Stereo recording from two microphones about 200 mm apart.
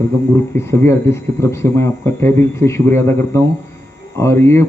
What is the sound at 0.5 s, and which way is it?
A man's voice, 10° left (ahead or behind).